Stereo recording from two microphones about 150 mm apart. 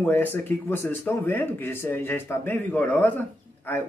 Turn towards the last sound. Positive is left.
turn(degrees=15)  # may be behind; listen again after turning